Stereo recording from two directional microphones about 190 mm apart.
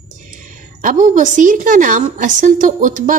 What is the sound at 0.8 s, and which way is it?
A woman's voice, 45° right (ahead or behind).